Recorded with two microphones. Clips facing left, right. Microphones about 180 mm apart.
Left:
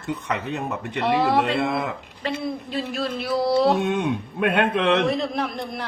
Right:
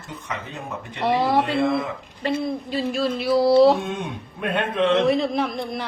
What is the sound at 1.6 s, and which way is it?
Speech, 65° left (ahead or behind).